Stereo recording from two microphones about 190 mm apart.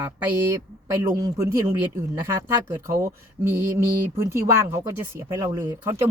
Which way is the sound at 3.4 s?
10° right (ahead or behind).